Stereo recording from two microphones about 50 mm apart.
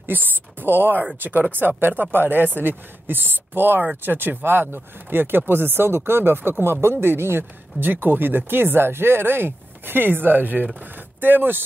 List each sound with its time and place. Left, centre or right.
0.0 s speech: right